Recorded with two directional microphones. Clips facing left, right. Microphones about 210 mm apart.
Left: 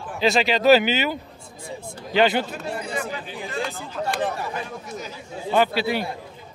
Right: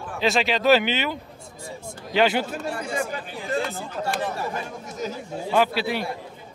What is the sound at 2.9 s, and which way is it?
Speech, 45° right (ahead or behind).